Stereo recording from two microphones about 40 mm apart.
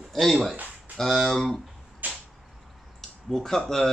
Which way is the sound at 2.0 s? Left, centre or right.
Right.